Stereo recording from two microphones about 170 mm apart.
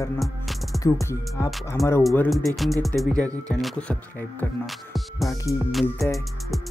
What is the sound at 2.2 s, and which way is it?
Speech, centre (ahead or behind).